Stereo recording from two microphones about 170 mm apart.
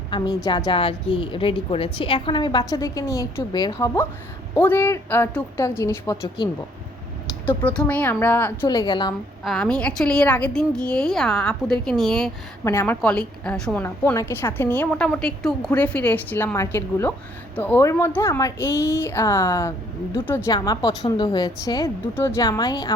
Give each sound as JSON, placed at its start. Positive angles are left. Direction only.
{"t": 0.1, "sound": "a woman's voice", "side_deg": 25}
{"t": 7.4, "sound": "a woman's voice", "side_deg": 10}
{"t": 8.6, "sound": "a woman's voice", "side_deg": 25}
{"t": 9.4, "sound": "a woman's voice", "side_deg": 0}
{"t": 20.5, "sound": "a woman's voice", "side_deg": 25}